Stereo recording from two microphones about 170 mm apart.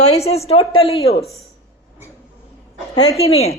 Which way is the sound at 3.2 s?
35° left (ahead or behind).